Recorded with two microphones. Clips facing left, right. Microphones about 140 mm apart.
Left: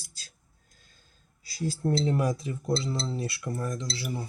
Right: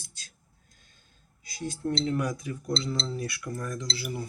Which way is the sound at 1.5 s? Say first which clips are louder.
Left 3 dB; 35° left (ahead or behind).